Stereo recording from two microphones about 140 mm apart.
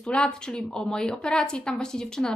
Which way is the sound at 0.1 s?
5° left (ahead or behind).